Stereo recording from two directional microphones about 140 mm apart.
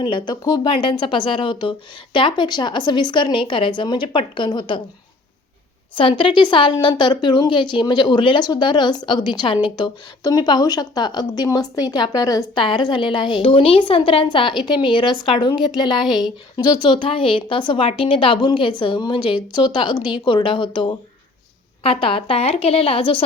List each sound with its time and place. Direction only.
0.0 s a woman's voice: 35° left (ahead or behind)
5.9 s a woman's voice: 35° left (ahead or behind)
16.7 s a woman's voice: 35° left (ahead or behind)